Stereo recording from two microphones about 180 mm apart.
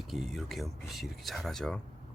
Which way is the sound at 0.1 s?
Centre (ahead or behind).